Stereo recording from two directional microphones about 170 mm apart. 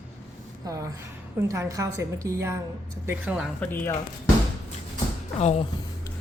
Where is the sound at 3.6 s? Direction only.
10° left (ahead or behind).